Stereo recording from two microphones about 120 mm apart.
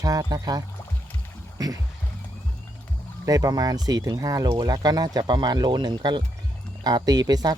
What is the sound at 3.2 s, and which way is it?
Speech, 30° right (ahead or behind).